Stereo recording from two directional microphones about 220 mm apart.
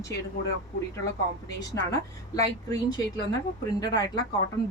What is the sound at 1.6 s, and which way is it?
Speech, 15° left (ahead or behind).